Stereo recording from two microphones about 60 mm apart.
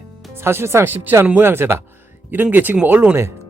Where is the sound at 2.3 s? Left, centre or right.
Right.